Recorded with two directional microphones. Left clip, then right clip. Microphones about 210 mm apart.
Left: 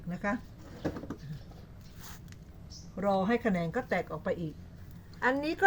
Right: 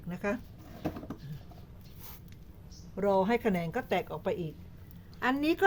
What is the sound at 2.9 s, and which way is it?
A woman's voice, 50° right (ahead or behind).